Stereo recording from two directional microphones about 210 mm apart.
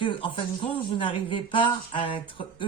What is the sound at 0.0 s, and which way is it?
Speech, 25° left (ahead or behind).